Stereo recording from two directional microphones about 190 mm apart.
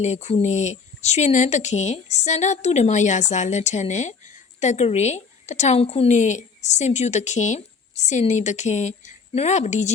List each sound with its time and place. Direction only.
0.0 s speech: 35° left (ahead or behind)